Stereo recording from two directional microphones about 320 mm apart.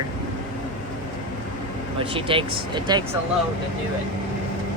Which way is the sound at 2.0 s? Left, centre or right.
Centre.